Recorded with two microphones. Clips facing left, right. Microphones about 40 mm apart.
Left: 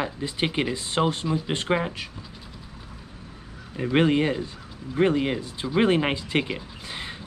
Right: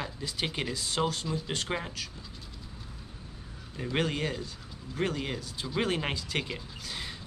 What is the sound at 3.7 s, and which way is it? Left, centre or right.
Speech, left.